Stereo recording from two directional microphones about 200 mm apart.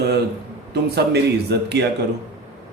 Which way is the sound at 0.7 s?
55° right (ahead or behind).